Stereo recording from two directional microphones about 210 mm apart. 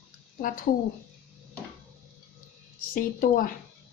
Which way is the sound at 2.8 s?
40° left (ahead or behind).